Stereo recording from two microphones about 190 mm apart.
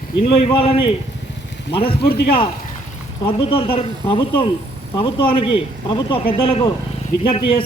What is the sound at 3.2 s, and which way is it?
Speech, 25° left (ahead or behind).